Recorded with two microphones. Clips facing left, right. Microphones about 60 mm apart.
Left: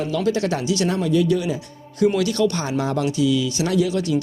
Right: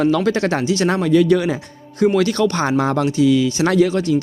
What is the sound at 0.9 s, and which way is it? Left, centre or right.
Speech, right.